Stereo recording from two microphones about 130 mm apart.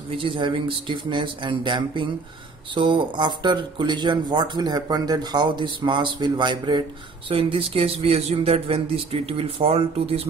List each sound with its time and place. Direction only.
0.1 s speech: 45° right (ahead or behind)